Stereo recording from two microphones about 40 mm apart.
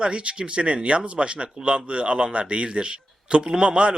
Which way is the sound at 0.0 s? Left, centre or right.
Right.